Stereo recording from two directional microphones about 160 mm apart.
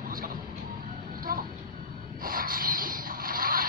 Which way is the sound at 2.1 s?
60° right (ahead or behind).